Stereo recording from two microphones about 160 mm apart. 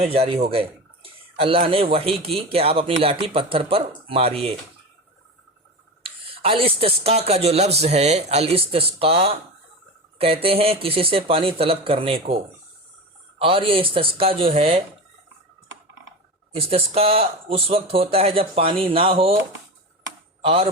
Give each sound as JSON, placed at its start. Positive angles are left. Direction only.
{"t": 0.0, "sound": "speech", "side_deg": -40}
{"t": 6.0, "sound": "speech", "side_deg": -35}
{"t": 13.4, "sound": "speech", "side_deg": -35}
{"t": 16.6, "sound": "speech", "side_deg": -40}
{"t": 20.4, "sound": "a man's voice", "side_deg": -35}